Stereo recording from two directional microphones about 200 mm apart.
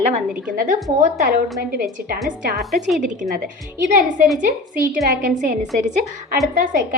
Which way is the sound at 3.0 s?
40° right (ahead or behind).